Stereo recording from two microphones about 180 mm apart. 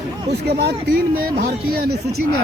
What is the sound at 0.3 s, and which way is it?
Speech, 65° right (ahead or behind).